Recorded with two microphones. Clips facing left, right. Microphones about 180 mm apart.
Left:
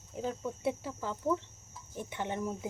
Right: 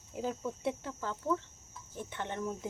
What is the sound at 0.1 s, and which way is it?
Speech, 5° right (ahead or behind).